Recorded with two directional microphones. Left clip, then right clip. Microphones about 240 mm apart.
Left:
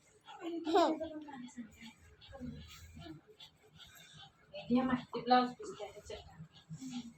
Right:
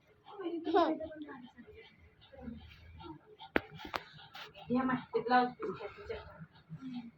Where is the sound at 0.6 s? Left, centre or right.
Centre.